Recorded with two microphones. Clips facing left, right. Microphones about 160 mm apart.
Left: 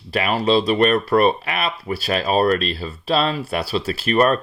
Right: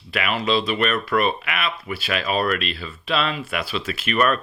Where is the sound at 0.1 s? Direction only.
35° left (ahead or behind).